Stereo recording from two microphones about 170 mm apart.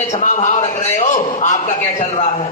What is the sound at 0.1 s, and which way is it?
A man's voice, 45° left (ahead or behind).